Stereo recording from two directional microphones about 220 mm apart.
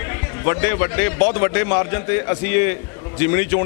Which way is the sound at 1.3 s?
15° left (ahead or behind).